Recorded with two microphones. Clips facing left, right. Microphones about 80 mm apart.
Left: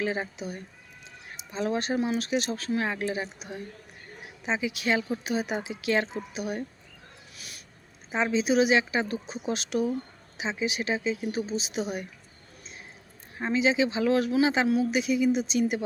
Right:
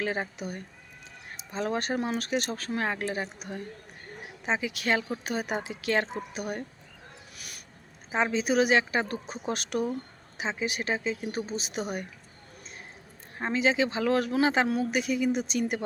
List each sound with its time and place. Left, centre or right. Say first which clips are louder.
0.0 s speech: left 1 dB; right
4.6 s speech: left 1 dB; right
8.3 s speech: left 2 dB; right
13.4 s speech: left 1 dB; right